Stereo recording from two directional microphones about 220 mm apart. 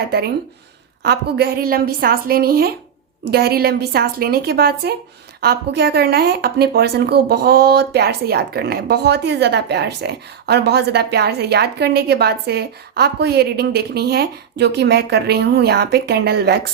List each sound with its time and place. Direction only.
1.0 s speech: 45° right (ahead or behind)